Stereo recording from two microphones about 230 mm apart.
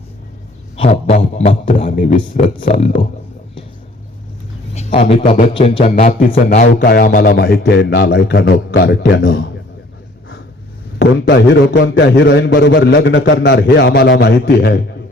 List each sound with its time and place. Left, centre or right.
0.8 s a man's voice: left
4.7 s a man's voice: left
11.0 s a man's voice: left